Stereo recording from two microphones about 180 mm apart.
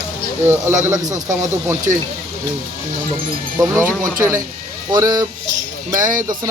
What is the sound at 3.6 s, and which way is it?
Speech, 15° right (ahead or behind).